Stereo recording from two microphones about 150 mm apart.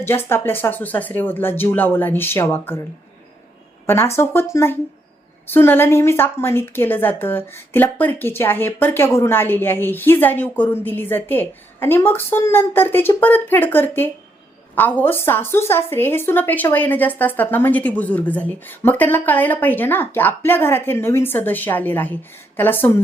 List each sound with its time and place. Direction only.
0.0 s a woman's voice: 15° left (ahead or behind)
3.8 s a woman's voice: 15° left (ahead or behind)